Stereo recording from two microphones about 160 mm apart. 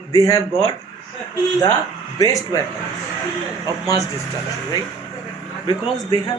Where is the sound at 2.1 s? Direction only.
20° left (ahead or behind).